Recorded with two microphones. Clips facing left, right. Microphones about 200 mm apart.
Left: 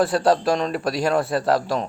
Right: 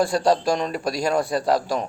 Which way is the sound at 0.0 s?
5° left (ahead or behind).